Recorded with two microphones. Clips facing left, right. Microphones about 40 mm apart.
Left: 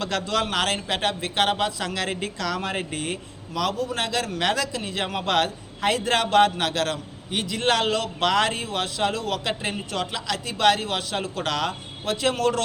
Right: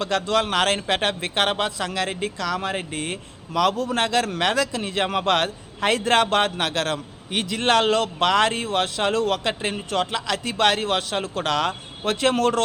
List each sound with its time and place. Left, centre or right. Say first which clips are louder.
0.0 s a man's voice: right 3 dB; right
1.9 s speech: right 2 dB; right
2.9 s a man's voice: even; right
9.5 s a man's voice: right 3 dB; right
12.0 s a man's voice: right 3 dB; right